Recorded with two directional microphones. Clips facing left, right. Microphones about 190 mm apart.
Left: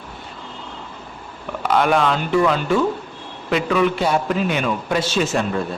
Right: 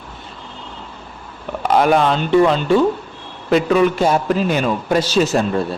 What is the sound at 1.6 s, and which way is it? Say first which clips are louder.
Speech: right 3 dB; 35° right (ahead or behind).